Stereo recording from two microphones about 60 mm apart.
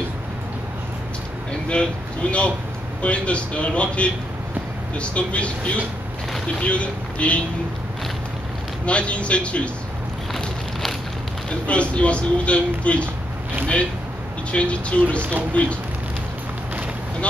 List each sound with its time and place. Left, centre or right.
1.7 s speech: centre
8.8 s speech: left
10.4 s a sound: centre
11.6 s speech: left
14.5 s speech: left